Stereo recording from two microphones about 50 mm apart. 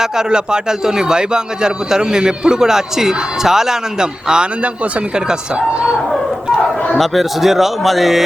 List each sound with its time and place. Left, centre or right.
0.0 s a man's voice: centre
6.9 s speech: centre